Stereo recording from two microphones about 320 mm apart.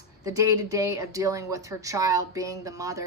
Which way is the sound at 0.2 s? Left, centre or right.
Centre.